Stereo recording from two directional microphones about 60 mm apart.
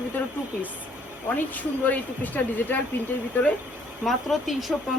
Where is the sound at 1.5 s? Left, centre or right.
Left.